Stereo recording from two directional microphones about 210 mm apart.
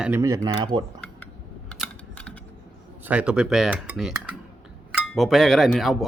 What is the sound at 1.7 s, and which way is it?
Typing, 5° left (ahead or behind).